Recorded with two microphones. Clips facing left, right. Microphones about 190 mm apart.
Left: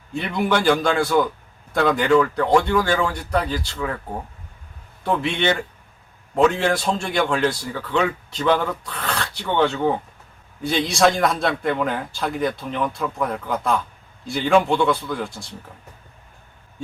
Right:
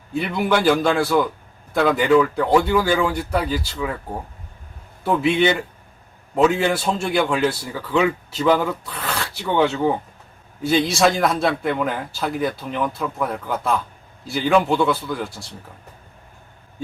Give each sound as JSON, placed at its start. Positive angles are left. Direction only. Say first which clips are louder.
{"t": 0.1, "sound": "a man's voice", "louder": "right 1 dB", "side_deg": -5}
{"t": 5.0, "sound": "a man's voice", "louder": "right 3 dB", "side_deg": -5}